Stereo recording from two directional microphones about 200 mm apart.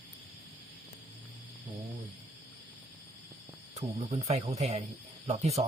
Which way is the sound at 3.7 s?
35° right (ahead or behind).